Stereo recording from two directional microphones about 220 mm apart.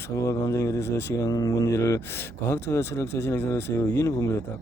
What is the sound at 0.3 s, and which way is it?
Speech, 15° left (ahead or behind).